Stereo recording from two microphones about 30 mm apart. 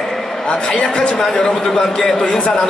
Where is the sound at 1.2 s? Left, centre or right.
Centre.